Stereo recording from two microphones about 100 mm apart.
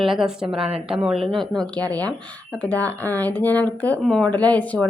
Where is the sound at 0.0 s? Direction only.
5° right (ahead or behind).